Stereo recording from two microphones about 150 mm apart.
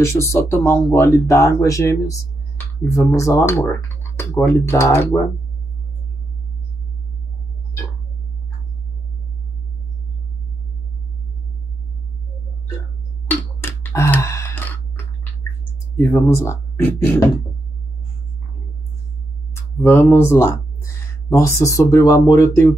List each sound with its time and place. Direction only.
0.0 s speech: 20° left (ahead or behind)
13.8 s gasp: 15° left (ahead or behind)
16.0 s speech: 15° left (ahead or behind)
19.5 s speech: 15° left (ahead or behind)